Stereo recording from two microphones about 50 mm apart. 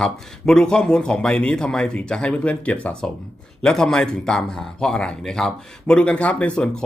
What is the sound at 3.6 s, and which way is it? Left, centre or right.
Speech, centre.